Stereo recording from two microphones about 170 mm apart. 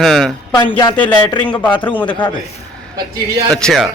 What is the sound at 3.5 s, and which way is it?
Speech, centre (ahead or behind).